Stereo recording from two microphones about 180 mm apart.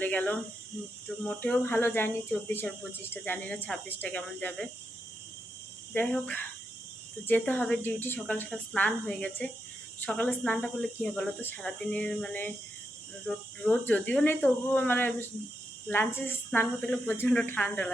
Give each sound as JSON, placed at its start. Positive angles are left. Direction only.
{"t": 0.0, "sound": "speech", "side_deg": 10}
{"t": 5.9, "sound": "speech", "side_deg": 5}